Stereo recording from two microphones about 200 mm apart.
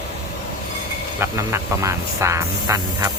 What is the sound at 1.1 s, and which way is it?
Speech, 15° right (ahead or behind).